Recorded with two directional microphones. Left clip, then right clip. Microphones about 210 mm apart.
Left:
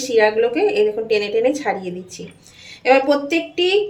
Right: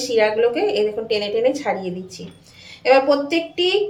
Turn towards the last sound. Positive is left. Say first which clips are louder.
# left 1 dB
turn(degrees=30)  # may be behind; listen again after turning